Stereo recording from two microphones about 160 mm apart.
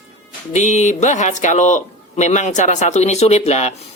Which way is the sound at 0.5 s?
50° left (ahead or behind).